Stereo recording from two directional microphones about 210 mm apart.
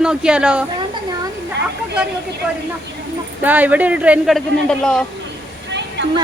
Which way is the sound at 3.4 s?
10° right (ahead or behind).